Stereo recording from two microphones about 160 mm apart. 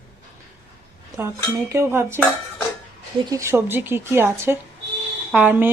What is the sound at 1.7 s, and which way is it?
Speech, 15° right (ahead or behind).